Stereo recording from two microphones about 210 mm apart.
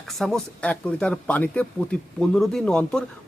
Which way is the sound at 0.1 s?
Centre (ahead or behind).